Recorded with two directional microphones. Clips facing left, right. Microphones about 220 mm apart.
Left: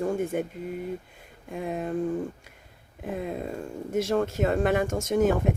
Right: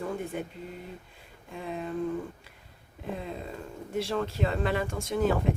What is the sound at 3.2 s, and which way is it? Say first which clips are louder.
Speech: left 6 dB; 50° left (ahead or behind).